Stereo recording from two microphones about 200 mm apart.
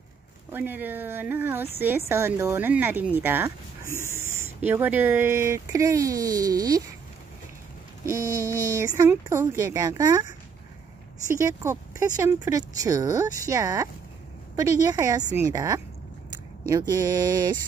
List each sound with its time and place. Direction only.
0.5 s speech: 10° right (ahead or behind)
8.0 s speech: 15° right (ahead or behind)
11.2 s speech: 15° right (ahead or behind)
16.9 s speech: 20° right (ahead or behind)